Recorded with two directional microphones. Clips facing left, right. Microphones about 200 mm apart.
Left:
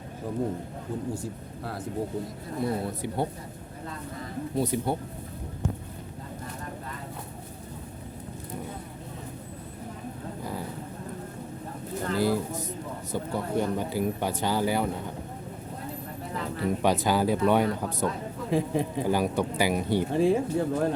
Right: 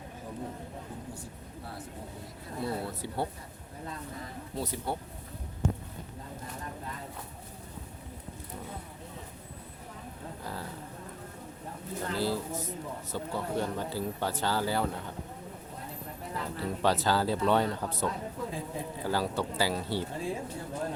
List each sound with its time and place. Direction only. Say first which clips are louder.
1.1 s speech: left 9 dB; 90° left
2.6 s speech: left 5 dB; 15° left (ahead or behind)
4.5 s speech: left 7 dB; 15° left (ahead or behind)
10.4 s a sound: left 5 dB; 15° left (ahead or behind)
12.1 s a man's voice: left 6 dB; 15° left (ahead or behind)
16.4 s speech: left 4 dB; 15° left (ahead or behind)
18.5 s a man's voice: left 11 dB; 80° left
19.0 s speech: left 1 dB; 15° left (ahead or behind)
20.1 s speech: left 12 dB; 75° left (ahead or behind)